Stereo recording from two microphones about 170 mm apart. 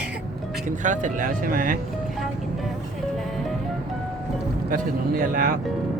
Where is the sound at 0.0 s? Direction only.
5° right (ahead or behind).